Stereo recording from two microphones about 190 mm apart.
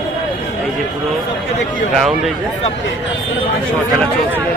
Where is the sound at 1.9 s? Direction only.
Centre (ahead or behind).